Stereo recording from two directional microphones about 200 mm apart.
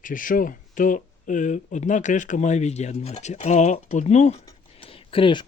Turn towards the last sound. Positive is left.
turn(degrees=25)  # may be behind; listen again after turning